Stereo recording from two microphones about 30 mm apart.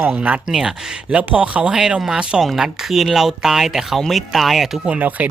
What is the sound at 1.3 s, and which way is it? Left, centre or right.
Speech, right.